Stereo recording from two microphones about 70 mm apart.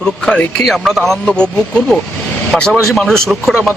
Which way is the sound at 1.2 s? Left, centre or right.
Centre.